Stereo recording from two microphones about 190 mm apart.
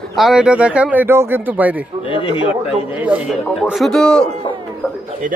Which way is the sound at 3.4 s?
5° left (ahead or behind).